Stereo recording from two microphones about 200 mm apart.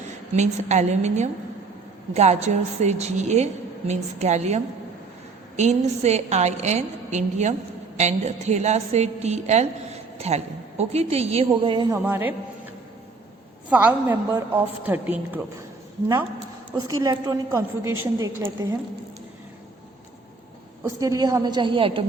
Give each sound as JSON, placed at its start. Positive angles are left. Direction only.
{"t": 0.3, "sound": "a woman's voice", "side_deg": -35}
{"t": 13.7, "sound": "a woman's voice", "side_deg": -10}
{"t": 16.7, "sound": "a woman's voice", "side_deg": -20}
{"t": 20.8, "sound": "a woman's voice", "side_deg": -15}